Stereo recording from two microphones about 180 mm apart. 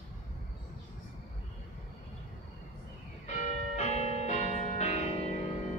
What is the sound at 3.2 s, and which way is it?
Change ringing, 35° left (ahead or behind).